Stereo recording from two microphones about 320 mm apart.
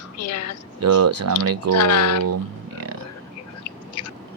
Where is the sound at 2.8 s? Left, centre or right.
Right.